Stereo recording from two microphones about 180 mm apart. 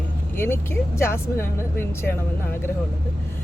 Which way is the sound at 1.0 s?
15° left (ahead or behind).